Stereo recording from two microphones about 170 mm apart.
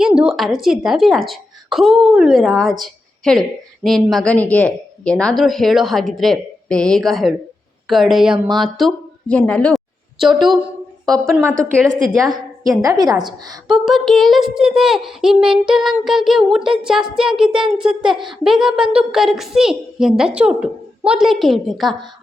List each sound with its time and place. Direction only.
0.0 s a woman's voice: 5° right (ahead or behind)
3.8 s a woman's voice: centre (ahead or behind)
12.2 s a woman's voice: 20° right (ahead or behind)
13.7 s a woman's voice: centre (ahead or behind)
18.0 s a woman's voice: 25° right (ahead or behind)
18.4 s a woman's voice: 5° right (ahead or behind)